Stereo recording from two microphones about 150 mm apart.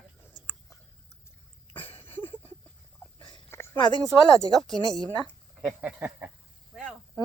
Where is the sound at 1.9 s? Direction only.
15° left (ahead or behind).